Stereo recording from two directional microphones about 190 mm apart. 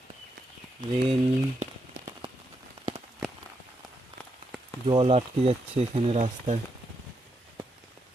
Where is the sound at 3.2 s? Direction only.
Centre (ahead or behind).